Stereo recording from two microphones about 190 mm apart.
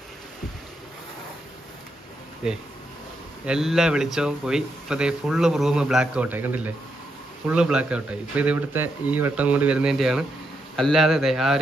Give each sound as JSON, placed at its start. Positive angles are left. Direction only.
{"t": 3.4, "sound": "speech", "side_deg": 0}